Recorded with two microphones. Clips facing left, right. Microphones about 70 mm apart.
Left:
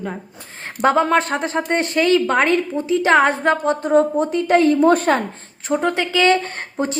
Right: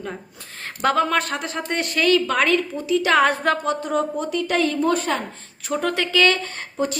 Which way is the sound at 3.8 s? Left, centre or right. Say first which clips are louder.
Left 7 dB; left.